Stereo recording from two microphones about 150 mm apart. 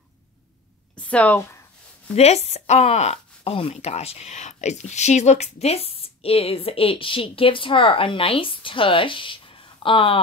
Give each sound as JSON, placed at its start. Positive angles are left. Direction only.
{"t": 0.9, "sound": "speech", "side_deg": 10}
{"t": 2.1, "sound": "speech", "side_deg": 45}